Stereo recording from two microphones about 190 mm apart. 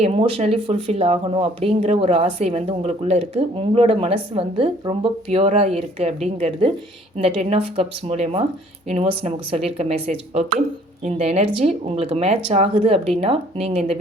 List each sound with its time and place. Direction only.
0.0 s speech: 30° right (ahead or behind)